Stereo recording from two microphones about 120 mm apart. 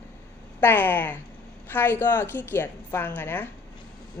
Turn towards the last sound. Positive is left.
turn(degrees=15)  # may be behind; listen again after turning